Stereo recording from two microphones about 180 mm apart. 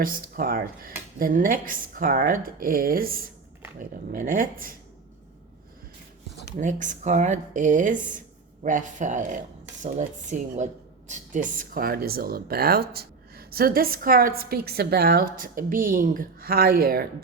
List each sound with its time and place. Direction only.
0.0 s a woman's voice: 50° right (ahead or behind)
6.6 s a woman's voice: 45° right (ahead or behind)